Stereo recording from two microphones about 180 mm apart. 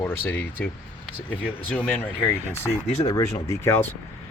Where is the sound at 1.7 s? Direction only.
10° left (ahead or behind).